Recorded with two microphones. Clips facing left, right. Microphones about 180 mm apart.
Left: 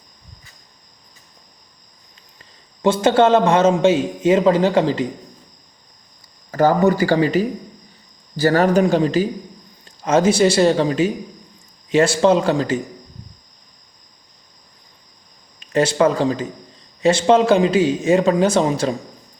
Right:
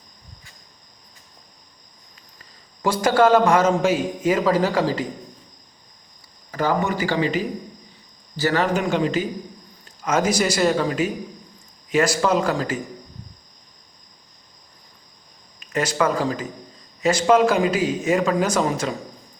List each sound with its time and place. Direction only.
2.8 s a man's voice: 25° left (ahead or behind)
6.5 s a man's voice: 40° left (ahead or behind)
15.6 s a man's voice: 30° left (ahead or behind)